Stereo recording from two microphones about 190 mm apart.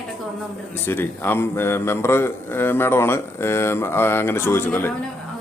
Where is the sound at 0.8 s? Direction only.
10° left (ahead or behind).